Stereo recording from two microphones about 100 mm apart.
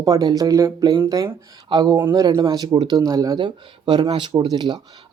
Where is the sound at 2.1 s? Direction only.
35° right (ahead or behind).